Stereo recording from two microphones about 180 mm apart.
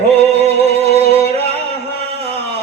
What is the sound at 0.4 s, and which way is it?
Music, 35° right (ahead or behind).